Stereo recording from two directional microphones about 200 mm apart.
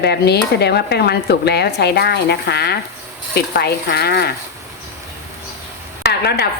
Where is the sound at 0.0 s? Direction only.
55° left (ahead or behind).